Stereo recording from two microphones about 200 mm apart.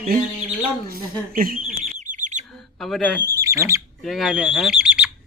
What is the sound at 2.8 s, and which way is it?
Speech, 5° left (ahead or behind).